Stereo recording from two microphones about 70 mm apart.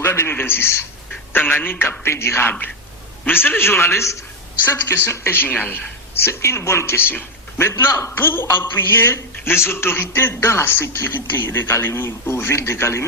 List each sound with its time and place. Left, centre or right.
0.0 s a sound: left
1.3 s a man's voice: left
6.2 s a man's voice: left